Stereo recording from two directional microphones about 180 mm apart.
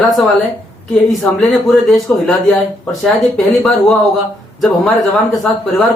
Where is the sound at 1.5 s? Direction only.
Centre (ahead or behind).